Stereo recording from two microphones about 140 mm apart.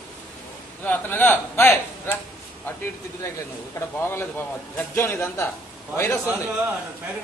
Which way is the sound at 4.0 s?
15° left (ahead or behind).